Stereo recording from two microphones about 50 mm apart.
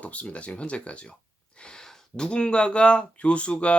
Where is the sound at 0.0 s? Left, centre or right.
Left.